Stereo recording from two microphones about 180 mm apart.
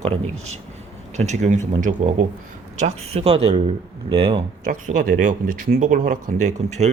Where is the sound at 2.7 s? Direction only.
35° right (ahead or behind).